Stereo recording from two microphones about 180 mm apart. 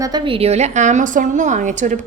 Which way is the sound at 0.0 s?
25° right (ahead or behind).